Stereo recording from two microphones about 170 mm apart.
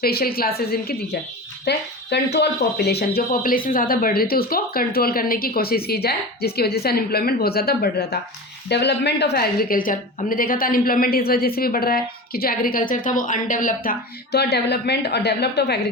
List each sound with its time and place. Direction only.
0.0 s speech: 65° left (ahead or behind)
1.6 s speech: 75° left (ahead or behind)
3.2 s speech: 55° left (ahead or behind)
8.7 s speech: 80° left; by 13.9 s 50° left (ahead or behind)
14.3 s speech: 75° left (ahead or behind)